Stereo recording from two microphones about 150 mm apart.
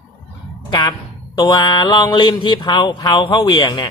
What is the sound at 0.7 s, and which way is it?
Speech, 30° left (ahead or behind).